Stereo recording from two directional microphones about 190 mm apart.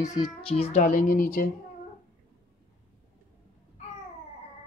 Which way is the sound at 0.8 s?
45° left (ahead or behind).